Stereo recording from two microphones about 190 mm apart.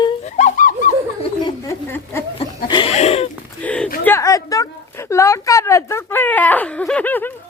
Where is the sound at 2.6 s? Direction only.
25° left (ahead or behind).